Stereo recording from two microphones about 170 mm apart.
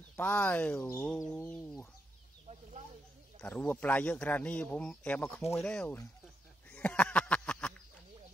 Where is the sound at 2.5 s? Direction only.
45° right (ahead or behind).